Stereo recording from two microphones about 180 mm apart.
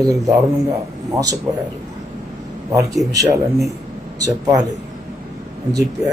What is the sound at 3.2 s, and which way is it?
Speech, 15° right (ahead or behind).